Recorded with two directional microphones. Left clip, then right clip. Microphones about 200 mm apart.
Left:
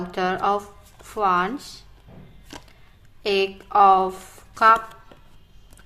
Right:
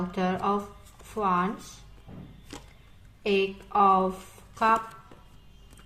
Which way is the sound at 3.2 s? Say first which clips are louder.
Left 4 dB; 25° left (ahead or behind).